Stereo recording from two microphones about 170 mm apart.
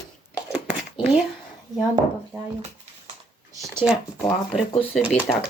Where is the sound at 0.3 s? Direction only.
5° right (ahead or behind).